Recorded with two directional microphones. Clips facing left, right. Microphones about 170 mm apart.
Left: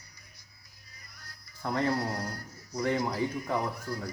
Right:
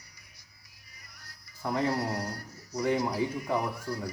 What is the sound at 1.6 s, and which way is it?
Speech, 15° right (ahead or behind).